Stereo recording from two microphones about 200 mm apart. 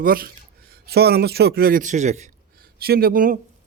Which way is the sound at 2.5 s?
50° right (ahead or behind).